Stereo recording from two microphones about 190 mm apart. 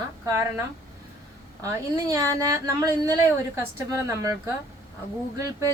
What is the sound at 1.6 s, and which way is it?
A woman's voice, 15° right (ahead or behind).